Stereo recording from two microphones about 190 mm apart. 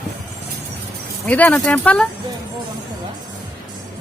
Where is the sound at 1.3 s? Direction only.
10° left (ahead or behind).